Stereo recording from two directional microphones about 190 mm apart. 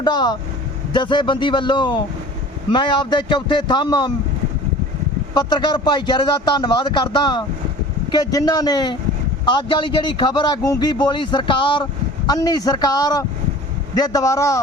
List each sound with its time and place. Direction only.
0.0 s speech: 20° left (ahead or behind)
5.3 s speech: 20° left (ahead or behind)